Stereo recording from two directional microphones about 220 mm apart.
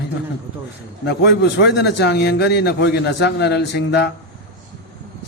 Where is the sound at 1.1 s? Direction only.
50° left (ahead or behind).